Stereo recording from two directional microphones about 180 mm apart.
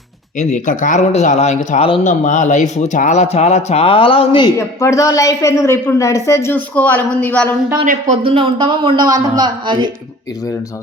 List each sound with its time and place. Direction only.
0.3 s speech: 45° left (ahead or behind); by 4.5 s 30° left (ahead or behind)
4.5 s a woman's voice: 15° left (ahead or behind)
7.9 s speech: 45° right (ahead or behind)
8.2 s a man's voice: 30° right (ahead or behind)